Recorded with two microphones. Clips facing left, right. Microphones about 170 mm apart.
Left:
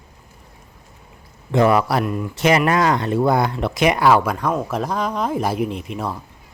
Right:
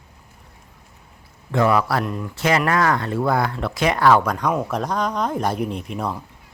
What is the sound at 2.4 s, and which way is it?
Speech, 20° left (ahead or behind).